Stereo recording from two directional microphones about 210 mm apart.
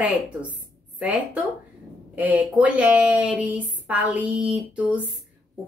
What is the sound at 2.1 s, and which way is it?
Speech, 5° right (ahead or behind).